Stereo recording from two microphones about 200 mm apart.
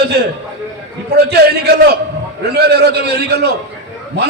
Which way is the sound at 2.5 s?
55° right (ahead or behind).